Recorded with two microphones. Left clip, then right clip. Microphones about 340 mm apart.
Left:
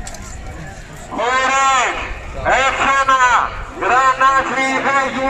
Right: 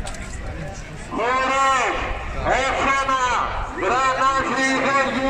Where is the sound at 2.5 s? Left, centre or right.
Left.